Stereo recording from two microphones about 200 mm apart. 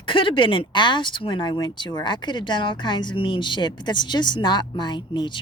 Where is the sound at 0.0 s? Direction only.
25° left (ahead or behind).